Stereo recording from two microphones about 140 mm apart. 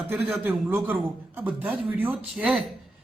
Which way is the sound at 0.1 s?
15° right (ahead or behind).